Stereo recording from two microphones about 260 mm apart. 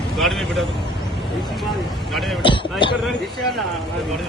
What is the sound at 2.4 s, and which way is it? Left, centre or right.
Speech, centre.